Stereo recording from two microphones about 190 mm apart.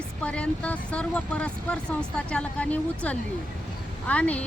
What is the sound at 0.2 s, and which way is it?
Speech, 5° left (ahead or behind).